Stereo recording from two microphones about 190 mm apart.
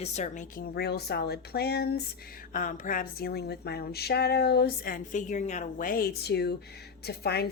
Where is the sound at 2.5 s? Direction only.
45° left (ahead or behind).